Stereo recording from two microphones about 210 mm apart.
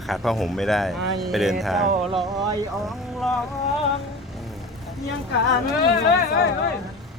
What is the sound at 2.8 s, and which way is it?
Speech, centre (ahead or behind).